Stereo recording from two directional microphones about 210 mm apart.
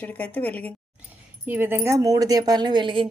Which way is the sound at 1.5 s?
10° right (ahead or behind).